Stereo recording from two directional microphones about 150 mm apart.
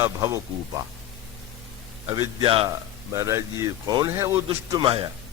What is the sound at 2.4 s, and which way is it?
Speech, 35° right (ahead or behind).